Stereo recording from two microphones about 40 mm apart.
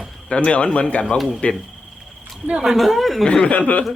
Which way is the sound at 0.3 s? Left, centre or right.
Left.